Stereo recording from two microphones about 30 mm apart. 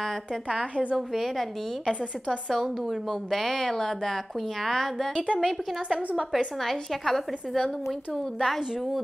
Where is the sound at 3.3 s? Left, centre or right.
Centre.